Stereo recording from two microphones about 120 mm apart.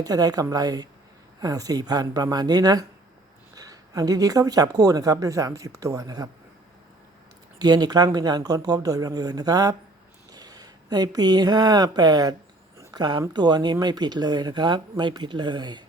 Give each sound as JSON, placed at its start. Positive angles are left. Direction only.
{"t": 0.0, "sound": "speech", "side_deg": -30}
{"t": 7.6, "sound": "speech", "side_deg": -35}